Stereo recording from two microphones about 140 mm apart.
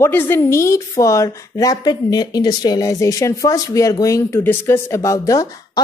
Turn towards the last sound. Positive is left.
turn(degrees=20)  # may be behind; listen again after turning